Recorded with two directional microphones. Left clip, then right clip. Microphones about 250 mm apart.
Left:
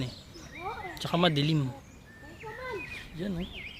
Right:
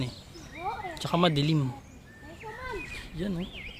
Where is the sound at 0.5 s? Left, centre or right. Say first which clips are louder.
Right 3 dB; right.